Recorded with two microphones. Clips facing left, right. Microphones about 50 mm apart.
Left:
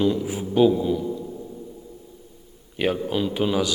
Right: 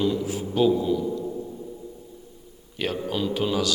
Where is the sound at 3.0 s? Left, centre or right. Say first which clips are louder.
Left 2 dB; centre.